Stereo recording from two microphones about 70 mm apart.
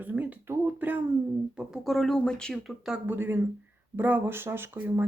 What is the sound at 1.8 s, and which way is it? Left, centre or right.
Speech, centre.